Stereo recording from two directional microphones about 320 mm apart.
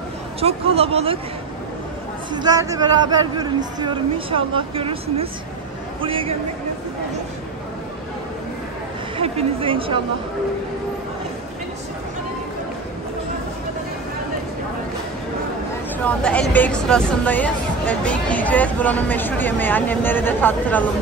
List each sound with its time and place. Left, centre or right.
0.4 s a woman's voice: centre
2.3 s a woman's voice: centre
9.2 s a woman's voice: centre
16.0 s speech: centre